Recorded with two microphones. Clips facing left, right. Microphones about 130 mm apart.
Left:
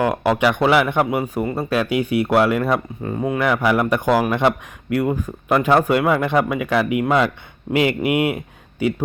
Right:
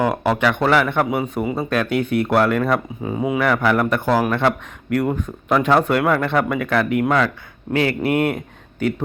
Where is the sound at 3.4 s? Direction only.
10° left (ahead or behind).